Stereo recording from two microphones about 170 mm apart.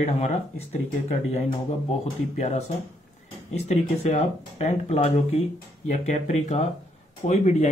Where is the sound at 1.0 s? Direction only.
40° left (ahead or behind).